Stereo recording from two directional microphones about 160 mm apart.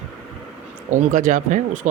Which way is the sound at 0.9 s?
50° right (ahead or behind).